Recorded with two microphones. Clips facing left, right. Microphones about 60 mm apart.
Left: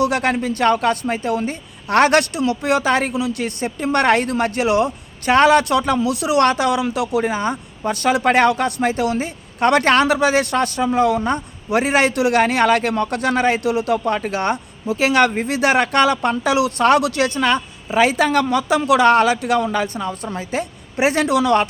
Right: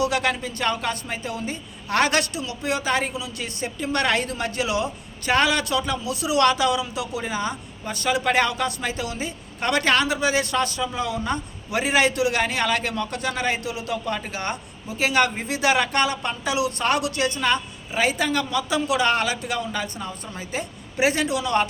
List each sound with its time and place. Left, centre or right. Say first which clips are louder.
0.0 s a woman's voice: left 5 dB; left